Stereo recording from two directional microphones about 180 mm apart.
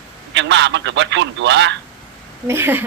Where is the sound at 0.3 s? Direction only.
85° right.